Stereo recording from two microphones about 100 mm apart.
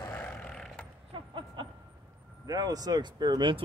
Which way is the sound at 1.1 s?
50° right (ahead or behind).